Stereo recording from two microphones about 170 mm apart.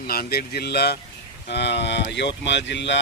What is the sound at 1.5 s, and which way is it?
Speech, 85° left.